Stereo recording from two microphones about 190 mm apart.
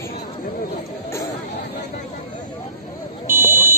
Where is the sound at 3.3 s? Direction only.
10° right (ahead or behind).